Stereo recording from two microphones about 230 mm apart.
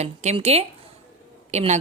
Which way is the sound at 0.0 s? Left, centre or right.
Right.